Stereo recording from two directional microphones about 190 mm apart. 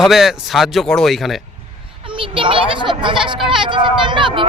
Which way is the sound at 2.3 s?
25° right (ahead or behind).